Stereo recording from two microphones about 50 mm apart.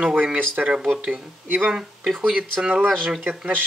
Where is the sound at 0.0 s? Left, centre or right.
Right.